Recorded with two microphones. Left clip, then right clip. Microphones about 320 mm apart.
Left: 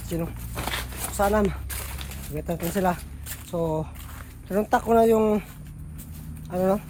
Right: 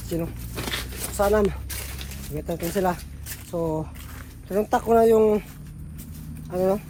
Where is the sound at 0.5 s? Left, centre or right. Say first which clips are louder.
Even; left.